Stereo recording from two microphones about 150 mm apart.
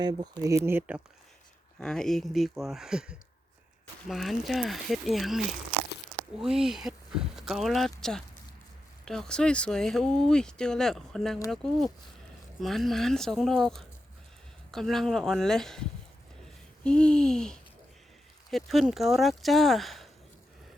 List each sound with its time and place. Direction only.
0.0 s speech: 25° right (ahead or behind)
1.8 s speech: 5° left (ahead or behind)